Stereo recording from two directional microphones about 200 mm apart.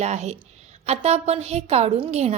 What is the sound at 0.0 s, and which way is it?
A woman's voice, 35° right (ahead or behind).